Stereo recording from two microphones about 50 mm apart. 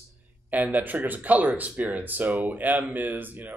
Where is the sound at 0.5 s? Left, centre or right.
Right.